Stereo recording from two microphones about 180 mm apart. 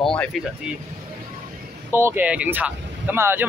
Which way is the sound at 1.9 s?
10° right (ahead or behind).